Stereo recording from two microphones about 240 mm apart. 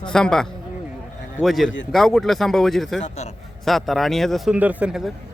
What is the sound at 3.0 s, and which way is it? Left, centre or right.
Speech, left.